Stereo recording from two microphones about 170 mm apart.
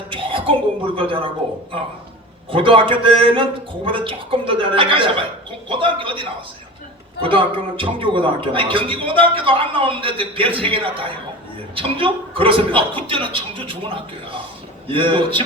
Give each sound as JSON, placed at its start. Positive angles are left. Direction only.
{"t": 0.1, "sound": "a sound", "side_deg": -30}
{"t": 0.9, "sound": "a man's voice", "side_deg": -30}
{"t": 2.5, "sound": "a man's voice", "side_deg": -30}